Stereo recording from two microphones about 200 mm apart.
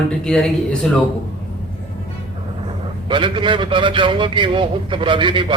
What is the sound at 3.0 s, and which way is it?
A man's voice, 25° right (ahead or behind).